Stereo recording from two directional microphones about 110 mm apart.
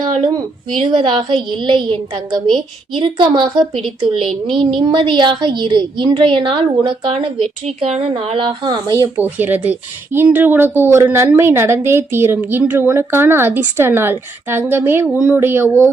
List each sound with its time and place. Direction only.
0.9 s a woman's voice: 45° right (ahead or behind)
4.2 s speech: centre (ahead or behind)
4.9 s a woman's voice: 50° right (ahead or behind)
9.1 s speech: 15° right (ahead or behind)
15.0 s speech: 10° right (ahead or behind)